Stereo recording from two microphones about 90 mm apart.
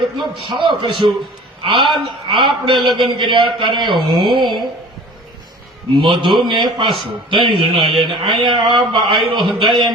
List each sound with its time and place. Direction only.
0.2 s a man's voice: 60° right (ahead or behind)
6.0 s a man's voice: 60° right (ahead or behind)